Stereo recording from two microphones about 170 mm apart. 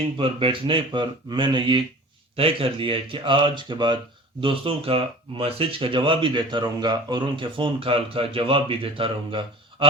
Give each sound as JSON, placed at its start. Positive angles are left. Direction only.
{"t": 0.0, "sound": "speech", "side_deg": -30}